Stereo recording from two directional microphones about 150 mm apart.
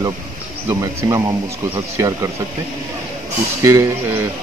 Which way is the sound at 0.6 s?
20° right (ahead or behind).